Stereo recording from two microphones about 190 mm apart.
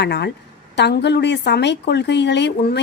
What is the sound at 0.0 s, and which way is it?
A woman's voice, 60° left (ahead or behind).